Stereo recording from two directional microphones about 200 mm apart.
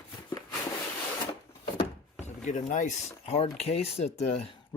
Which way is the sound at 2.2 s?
40° left (ahead or behind).